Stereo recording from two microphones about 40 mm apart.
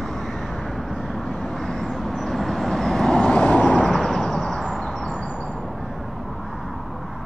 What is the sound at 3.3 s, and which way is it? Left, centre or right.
Vehicle, left.